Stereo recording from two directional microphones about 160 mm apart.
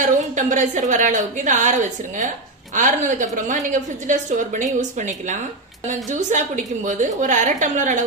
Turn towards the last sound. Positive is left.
turn(degrees=-50)  # may be behind; listen again after turning